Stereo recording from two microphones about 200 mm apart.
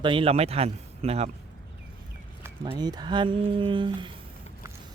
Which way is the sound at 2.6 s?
20° right (ahead or behind).